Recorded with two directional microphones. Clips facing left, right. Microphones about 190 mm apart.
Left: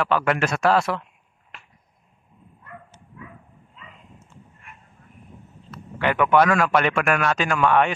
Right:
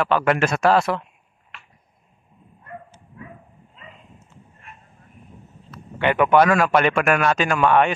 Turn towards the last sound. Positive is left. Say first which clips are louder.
# right 2 dB
turn(degrees=-25)  # may be behind; listen again after turning